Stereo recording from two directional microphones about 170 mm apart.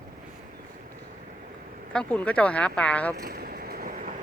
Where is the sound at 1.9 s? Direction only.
10° left (ahead or behind).